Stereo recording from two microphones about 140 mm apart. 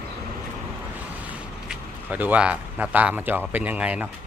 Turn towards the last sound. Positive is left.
turn(degrees=-10)  # may be behind; listen again after turning